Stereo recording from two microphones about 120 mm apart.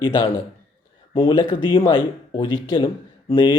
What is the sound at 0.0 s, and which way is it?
Speech, 45° left (ahead or behind).